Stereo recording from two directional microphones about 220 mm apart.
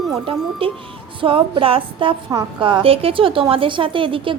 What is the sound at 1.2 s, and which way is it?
A woman's voice, 25° right (ahead or behind).